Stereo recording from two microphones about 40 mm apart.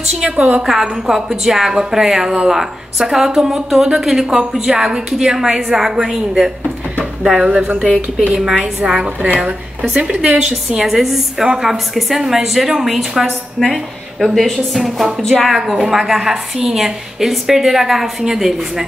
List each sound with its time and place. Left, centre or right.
0.2 s a woman's voice: right
0.7 s a woman's voice: centre
7.5 s a woman's voice: right
8.3 s a woman's voice: centre
8.9 s a woman's voice: right
9.8 s a woman's voice: centre
15.5 s a woman's voice: centre